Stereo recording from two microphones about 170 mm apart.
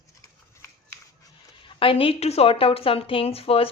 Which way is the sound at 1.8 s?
30° left (ahead or behind).